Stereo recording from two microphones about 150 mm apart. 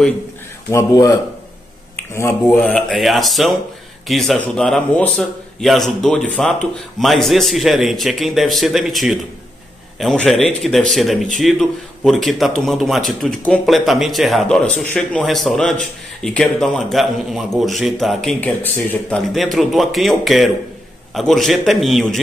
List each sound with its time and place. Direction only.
0.7 s speech: 20° left (ahead or behind)
2.0 s a sound: 15° left (ahead or behind)
2.4 s speech: 5° left (ahead or behind)
18.4 s speech: 10° left (ahead or behind)